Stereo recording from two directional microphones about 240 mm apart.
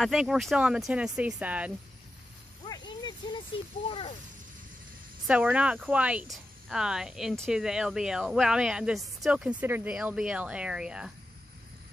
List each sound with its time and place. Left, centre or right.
0.0 s speech: centre
2.6 s a sound: centre
5.2 s speech: centre